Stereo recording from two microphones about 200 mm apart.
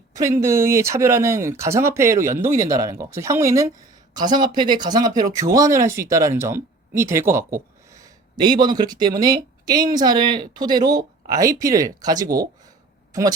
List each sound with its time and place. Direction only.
0.2 s speech: 15° right (ahead or behind)